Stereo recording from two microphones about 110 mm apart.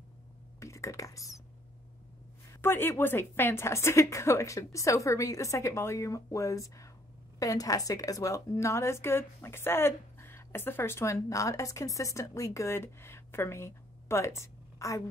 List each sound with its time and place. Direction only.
0.6 s cutlery: 25° left (ahead or behind)
2.6 s a woman's voice: 20° left (ahead or behind)